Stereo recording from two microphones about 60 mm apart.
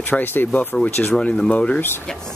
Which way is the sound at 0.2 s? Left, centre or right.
Left.